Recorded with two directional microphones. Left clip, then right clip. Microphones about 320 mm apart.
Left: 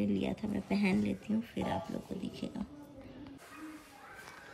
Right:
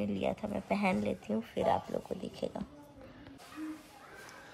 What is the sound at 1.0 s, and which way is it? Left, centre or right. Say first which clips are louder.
Speech: right 2 dB; centre.